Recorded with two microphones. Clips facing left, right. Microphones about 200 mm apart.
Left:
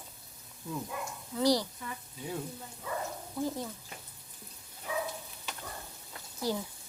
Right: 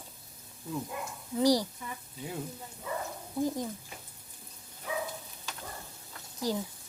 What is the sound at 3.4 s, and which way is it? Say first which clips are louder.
Speech: right 3 dB; 15° right (ahead or behind).